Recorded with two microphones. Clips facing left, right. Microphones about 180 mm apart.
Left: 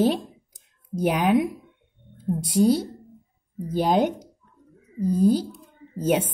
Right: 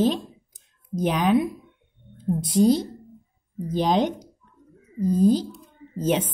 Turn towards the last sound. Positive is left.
turn(degrees=10)  # may be behind; listen again after turning